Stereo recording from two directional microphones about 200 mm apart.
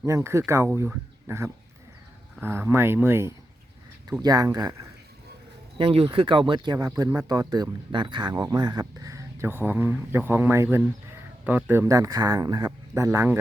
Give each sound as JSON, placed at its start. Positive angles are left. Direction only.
{"t": 0.0, "sound": "speech", "side_deg": -15}
{"t": 5.7, "sound": "speech", "side_deg": -30}